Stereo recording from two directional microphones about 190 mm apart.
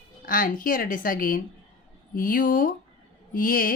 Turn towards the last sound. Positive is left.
turn(degrees=50)  # may be behind; listen again after turning